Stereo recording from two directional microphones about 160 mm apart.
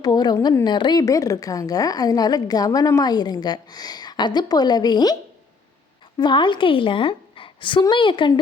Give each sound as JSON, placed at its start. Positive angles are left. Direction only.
{"t": 0.0, "sound": "a woman's voice", "side_deg": 25}
{"t": 6.1, "sound": "a woman's voice", "side_deg": 30}